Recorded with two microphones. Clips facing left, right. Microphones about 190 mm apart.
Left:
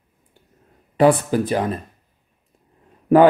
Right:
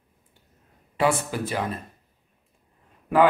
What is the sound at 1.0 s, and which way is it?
Speech, 35° left (ahead or behind).